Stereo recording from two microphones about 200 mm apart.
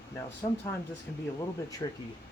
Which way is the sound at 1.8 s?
20° left (ahead or behind).